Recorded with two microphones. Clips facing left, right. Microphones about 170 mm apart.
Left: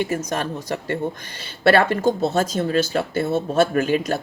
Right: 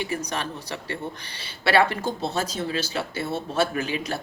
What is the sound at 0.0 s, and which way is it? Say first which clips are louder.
A woman's voice: left 5 dB; 45° left (ahead or behind).